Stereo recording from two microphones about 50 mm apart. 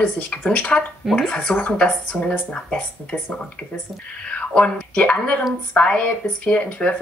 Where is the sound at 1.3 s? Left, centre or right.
Centre.